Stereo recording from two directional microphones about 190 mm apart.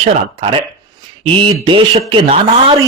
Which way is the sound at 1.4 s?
25° right (ahead or behind).